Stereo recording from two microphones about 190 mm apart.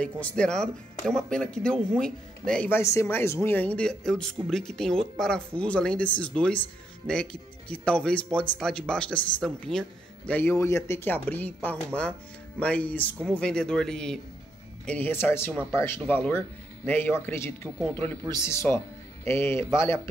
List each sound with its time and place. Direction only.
0.0 s speech: 5° left (ahead or behind)